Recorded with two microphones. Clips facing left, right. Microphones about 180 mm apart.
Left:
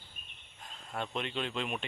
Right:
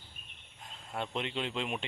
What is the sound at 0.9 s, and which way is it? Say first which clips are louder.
Speech: right 1 dB; 20° right (ahead or behind).